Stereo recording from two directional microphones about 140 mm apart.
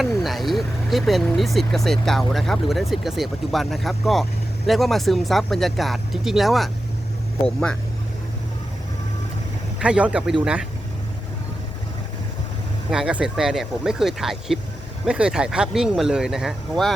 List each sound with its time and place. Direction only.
0.0 s speech: centre (ahead or behind)
9.7 s speech: 5° right (ahead or behind)
12.9 s speech: 5° right (ahead or behind)